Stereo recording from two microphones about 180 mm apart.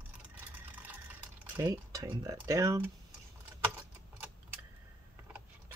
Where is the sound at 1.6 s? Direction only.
20° right (ahead or behind).